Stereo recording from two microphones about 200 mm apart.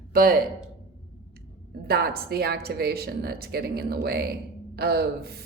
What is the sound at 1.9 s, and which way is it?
Speech, 50° right (ahead or behind).